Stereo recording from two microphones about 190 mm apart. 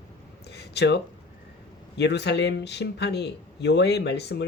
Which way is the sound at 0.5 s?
60° left (ahead or behind).